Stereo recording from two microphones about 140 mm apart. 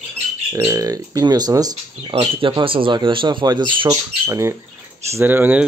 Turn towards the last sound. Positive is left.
turn(degrees=-15)  # may be behind; listen again after turning